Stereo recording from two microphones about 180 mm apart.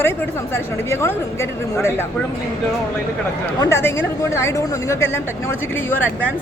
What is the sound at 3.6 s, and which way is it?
Speech, 15° left (ahead or behind).